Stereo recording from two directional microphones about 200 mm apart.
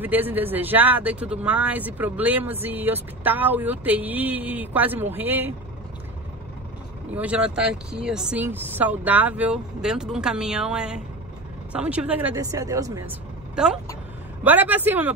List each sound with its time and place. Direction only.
0.0 s speech: 10° right (ahead or behind)
7.2 s speech: 5° right (ahead or behind)
13.6 s speech: 5° right (ahead or behind)